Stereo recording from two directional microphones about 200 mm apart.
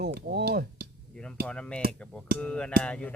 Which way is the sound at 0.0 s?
50° right (ahead or behind).